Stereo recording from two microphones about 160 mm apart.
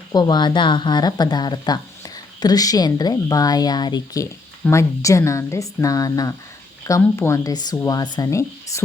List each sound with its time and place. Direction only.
0.1 s speech: 25° left (ahead or behind)